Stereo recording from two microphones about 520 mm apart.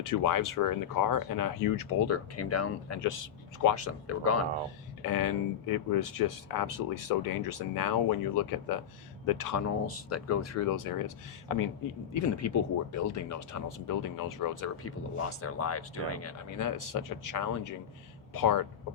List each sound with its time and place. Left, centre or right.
0.0 s speech: left
5.0 s speech: left